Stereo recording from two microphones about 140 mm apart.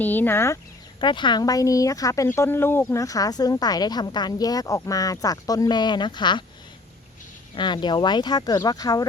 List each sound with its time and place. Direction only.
0.0 s speech: 15° left (ahead or behind)
0.9 s speech: 35° left (ahead or behind)
7.5 s speech: 35° left (ahead or behind)